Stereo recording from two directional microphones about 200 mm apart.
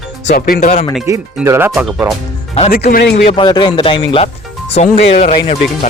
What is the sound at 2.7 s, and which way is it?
Speech, 45° left (ahead or behind).